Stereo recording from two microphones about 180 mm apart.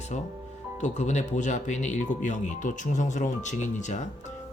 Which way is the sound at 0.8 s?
40° left (ahead or behind).